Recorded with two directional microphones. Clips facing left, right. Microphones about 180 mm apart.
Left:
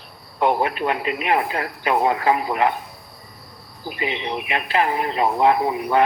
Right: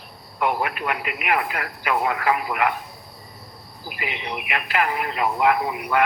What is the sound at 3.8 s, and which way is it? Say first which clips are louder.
Speech: left 5 dB; 30° left (ahead or behind).